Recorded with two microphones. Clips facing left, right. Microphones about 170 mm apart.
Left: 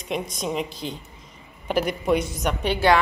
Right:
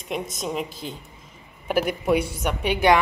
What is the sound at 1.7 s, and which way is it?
Speech, 5° right (ahead or behind).